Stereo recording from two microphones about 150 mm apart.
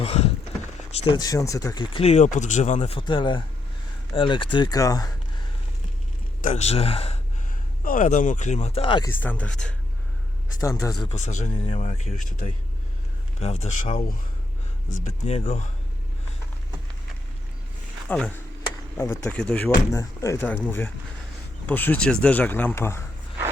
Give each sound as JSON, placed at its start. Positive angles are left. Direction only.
{"t": 0.0, "sound": "a sound", "side_deg": 40}
{"t": 0.9, "sound": "speech", "side_deg": 30}
{"t": 3.0, "sound": "speech", "side_deg": 30}
{"t": 6.4, "sound": "speech", "side_deg": 50}
{"t": 7.9, "sound": "speech", "side_deg": 60}
{"t": 9.0, "sound": "speech", "side_deg": 10}
{"t": 10.6, "sound": "speech", "side_deg": 20}
{"t": 11.1, "sound": "speech", "side_deg": 50}
{"t": 13.4, "sound": "speech", "side_deg": 45}
{"t": 15.2, "sound": "speech", "side_deg": 45}
{"t": 18.1, "sound": "speech", "side_deg": 10}
{"t": 19.4, "sound": "speech", "side_deg": 5}
{"t": 19.9, "sound": "speech", "side_deg": 20}